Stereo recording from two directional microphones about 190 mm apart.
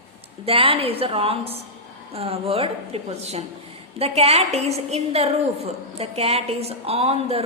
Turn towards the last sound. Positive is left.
turn(degrees=-30)  # may be behind; listen again after turning